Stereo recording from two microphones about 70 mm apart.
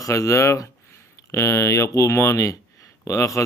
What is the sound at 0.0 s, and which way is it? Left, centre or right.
Speech, left.